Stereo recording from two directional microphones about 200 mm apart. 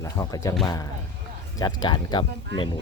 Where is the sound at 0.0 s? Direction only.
15° left (ahead or behind).